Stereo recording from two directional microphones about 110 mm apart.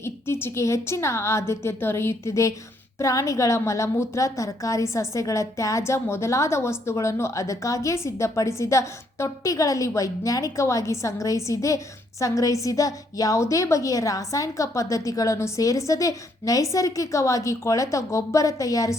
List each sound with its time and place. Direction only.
0.0 s a woman's voice: 20° left (ahead or behind)